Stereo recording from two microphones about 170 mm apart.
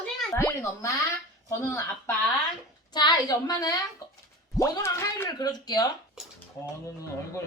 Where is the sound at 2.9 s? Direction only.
25° left (ahead or behind).